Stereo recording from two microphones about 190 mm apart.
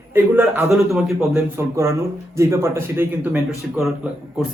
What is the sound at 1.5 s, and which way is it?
A man's voice, 15° right (ahead or behind).